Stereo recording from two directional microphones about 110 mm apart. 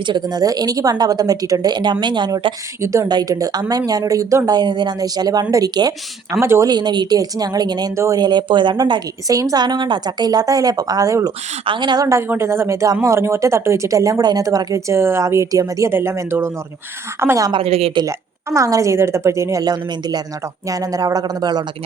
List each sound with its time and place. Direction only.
0.1 s a woman's voice: 35° right (ahead or behind)
2.8 s a woman's voice: 30° right (ahead or behind)
4.5 s a woman's voice: 45° right (ahead or behind)
6.4 s speech: 25° right (ahead or behind)
6.7 s a woman's voice: 40° right (ahead or behind)
7.9 s speech: 25° right (ahead or behind)
8.2 s a woman's voice: 40° right (ahead or behind)
11.6 s a woman's voice: 45° right (ahead or behind)
12.3 s speech: 25° right (ahead or behind)
17.6 s speech: 65° right (ahead or behind)
18.5 s a woman's voice: 30° right (ahead or behind)